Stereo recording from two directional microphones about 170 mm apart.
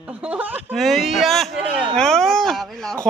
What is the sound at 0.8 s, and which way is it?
Speech, centre (ahead or behind).